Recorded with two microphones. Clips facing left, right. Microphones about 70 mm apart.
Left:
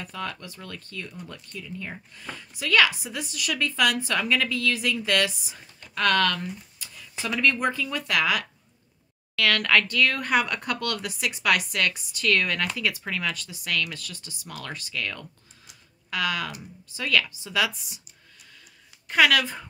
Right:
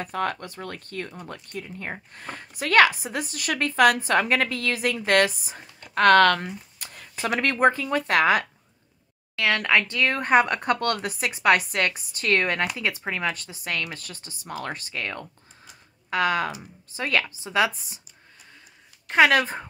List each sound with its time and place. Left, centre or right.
0.0 s speech: right
9.3 s speech: right
19.0 s speech: right